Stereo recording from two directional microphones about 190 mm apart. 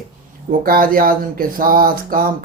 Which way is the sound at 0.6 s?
50° right (ahead or behind).